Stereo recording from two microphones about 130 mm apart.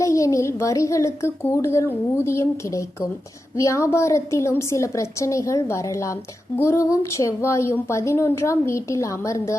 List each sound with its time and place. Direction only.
0.0 s speech: 25° left (ahead or behind)